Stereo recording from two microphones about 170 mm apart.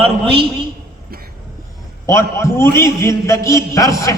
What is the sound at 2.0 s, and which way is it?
A man's voice, 15° left (ahead or behind).